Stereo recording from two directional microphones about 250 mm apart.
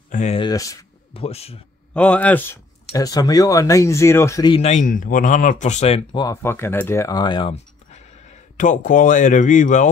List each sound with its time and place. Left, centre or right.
0.1 s speech: left
2.0 s speech: centre; by 9.8 s left